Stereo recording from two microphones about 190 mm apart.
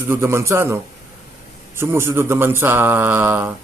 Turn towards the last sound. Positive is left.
turn(degrees=-10)  # may be behind; listen again after turning